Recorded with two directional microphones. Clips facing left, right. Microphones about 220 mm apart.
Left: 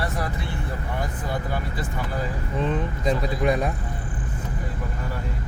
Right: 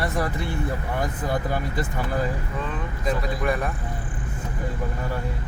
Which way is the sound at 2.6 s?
25° left (ahead or behind).